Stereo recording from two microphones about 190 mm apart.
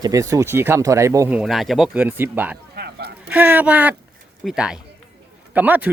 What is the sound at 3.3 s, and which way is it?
Speech, 10° right (ahead or behind).